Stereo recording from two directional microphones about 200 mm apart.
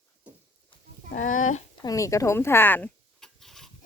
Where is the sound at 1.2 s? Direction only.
40° left (ahead or behind).